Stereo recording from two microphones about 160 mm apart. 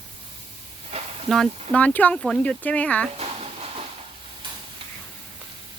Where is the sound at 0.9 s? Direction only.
40° right (ahead or behind).